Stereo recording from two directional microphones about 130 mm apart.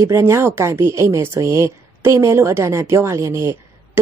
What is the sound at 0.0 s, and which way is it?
A woman's voice, 20° right (ahead or behind).